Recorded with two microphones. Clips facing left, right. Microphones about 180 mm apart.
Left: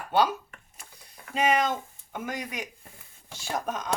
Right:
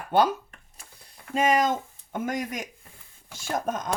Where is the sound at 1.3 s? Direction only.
45° right (ahead or behind).